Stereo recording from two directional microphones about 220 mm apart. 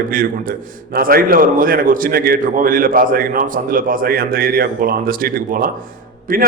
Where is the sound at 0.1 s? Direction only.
40° right (ahead or behind).